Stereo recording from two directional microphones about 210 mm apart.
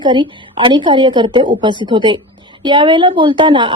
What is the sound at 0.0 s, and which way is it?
A woman's voice, 20° right (ahead or behind).